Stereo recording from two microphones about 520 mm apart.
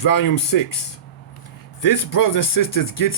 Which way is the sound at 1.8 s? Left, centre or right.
Left.